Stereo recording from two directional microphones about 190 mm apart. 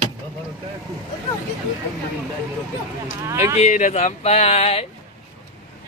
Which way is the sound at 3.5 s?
40° left (ahead or behind).